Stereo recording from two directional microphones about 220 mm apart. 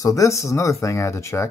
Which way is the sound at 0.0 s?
15° left (ahead or behind).